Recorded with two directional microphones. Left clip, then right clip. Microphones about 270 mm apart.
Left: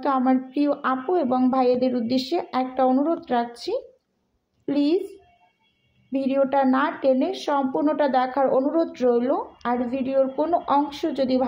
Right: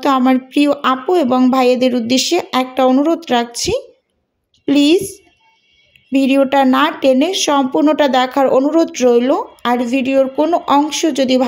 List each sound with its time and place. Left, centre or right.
0.0 s speech: right
6.1 s speech: right